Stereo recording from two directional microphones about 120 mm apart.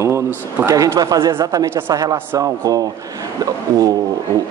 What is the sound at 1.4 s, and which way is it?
A man's voice, 20° right (ahead or behind).